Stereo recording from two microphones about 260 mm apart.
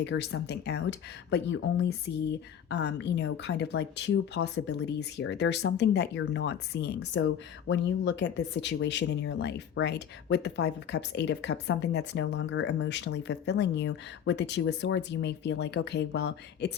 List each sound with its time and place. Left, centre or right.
0.0 s speech: left